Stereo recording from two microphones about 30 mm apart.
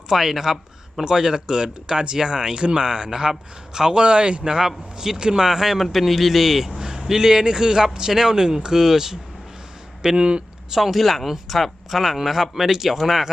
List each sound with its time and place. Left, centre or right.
0.1 s speech: centre
1.0 s speech: right
3.9 s speech: right
4.4 s speech: right
5.5 s speech: centre
5.8 s a man's voice: centre; by 8.7 s right
8.7 s speech: centre
10.0 s speech: right
10.7 s speech: centre